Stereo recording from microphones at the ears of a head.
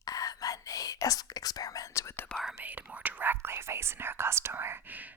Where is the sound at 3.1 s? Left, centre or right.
Right.